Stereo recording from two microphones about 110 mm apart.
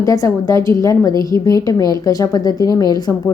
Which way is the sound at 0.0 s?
30° left (ahead or behind).